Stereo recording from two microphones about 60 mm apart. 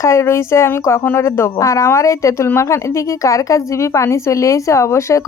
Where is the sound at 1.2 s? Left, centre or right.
Left.